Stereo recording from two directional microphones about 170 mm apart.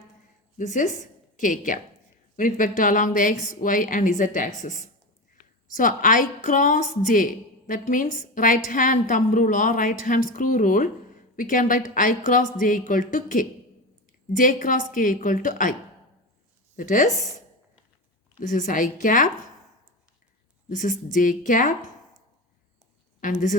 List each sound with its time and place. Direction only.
0.6 s a woman's voice: 50° left (ahead or behind)
16.7 s speech: 50° left (ahead or behind)
18.3 s a woman's voice: 50° left (ahead or behind)
20.7 s a woman's voice: 50° left (ahead or behind)
23.2 s a woman's voice: 50° left (ahead or behind)